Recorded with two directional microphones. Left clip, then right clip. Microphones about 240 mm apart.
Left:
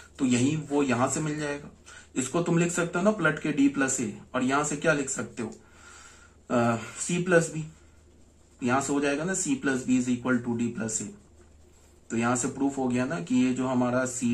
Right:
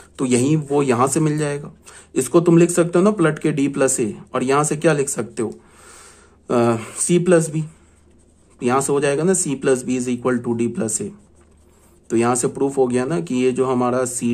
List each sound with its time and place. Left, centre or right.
0.3 s speech: right
8.5 s speech: right
12.1 s speech: right